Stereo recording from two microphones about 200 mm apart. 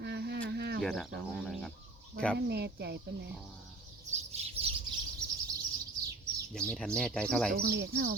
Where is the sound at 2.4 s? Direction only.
55° right (ahead or behind).